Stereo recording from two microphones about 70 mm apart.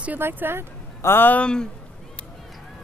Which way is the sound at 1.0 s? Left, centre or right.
Left.